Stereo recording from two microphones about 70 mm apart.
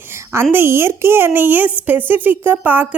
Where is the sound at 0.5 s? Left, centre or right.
Right.